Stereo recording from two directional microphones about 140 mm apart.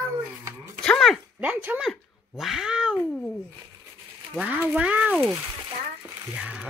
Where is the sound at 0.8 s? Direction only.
5° left (ahead or behind).